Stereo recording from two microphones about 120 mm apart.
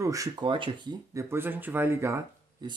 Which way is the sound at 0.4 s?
40° right (ahead or behind).